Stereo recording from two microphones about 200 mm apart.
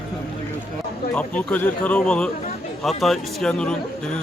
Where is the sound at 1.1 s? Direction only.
5° left (ahead or behind).